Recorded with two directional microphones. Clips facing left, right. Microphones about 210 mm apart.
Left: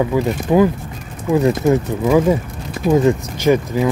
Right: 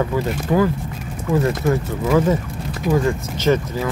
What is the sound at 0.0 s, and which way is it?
Speech, 15° left (ahead or behind).